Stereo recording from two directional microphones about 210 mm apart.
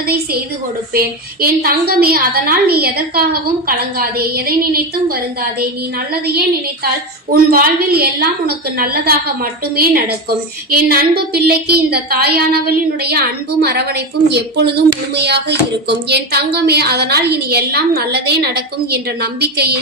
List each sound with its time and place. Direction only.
0.0 s a woman's voice: 45° right (ahead or behind)
7.5 s a woman's voice: 45° right (ahead or behind)